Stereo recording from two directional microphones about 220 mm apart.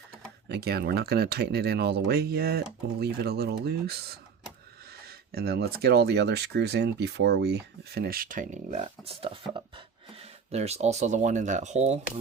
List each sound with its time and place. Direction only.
0.4 s speech: 50° right (ahead or behind); by 11.9 s 30° right (ahead or behind)